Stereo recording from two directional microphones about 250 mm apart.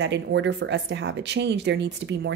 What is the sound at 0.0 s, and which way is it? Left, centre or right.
Speech, right.